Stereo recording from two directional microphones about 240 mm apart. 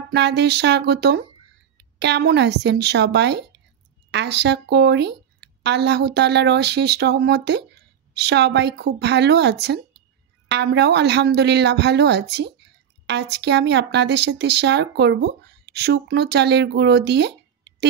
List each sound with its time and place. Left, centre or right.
0.1 s speech: right